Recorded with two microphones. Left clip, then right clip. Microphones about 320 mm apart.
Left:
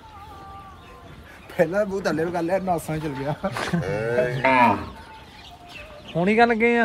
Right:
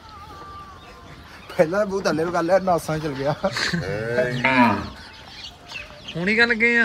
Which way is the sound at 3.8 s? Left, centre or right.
Left.